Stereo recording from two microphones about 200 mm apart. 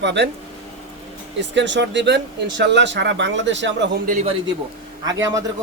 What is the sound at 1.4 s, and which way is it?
Speech, 65° right (ahead or behind).